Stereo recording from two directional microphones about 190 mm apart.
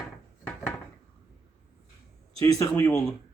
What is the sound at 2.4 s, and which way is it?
Speech, 20° left (ahead or behind).